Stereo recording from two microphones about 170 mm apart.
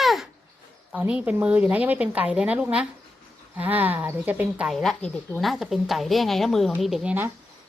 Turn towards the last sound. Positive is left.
turn(degrees=-10)  # may be behind; listen again after turning